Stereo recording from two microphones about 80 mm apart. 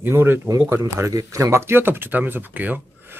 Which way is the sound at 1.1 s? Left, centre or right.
Right.